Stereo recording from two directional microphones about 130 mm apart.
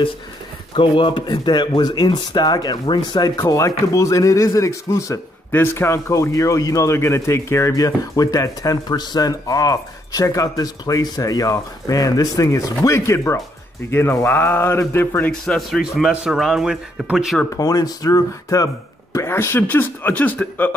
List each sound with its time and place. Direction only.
0.7 s speech: 40° left (ahead or behind); by 15.3 s 15° left (ahead or behind)
15.4 s a man's voice: centre (ahead or behind)
17.6 s speech: 30° left (ahead or behind); by 20.7 s 15° left (ahead or behind)